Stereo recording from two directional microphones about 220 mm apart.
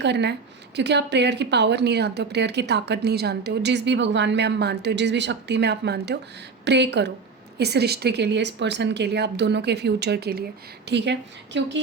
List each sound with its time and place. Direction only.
0.0 s a woman's voice: 50° right (ahead or behind)